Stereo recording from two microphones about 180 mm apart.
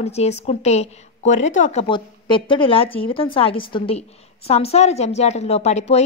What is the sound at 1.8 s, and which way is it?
A woman's voice, 25° left (ahead or behind).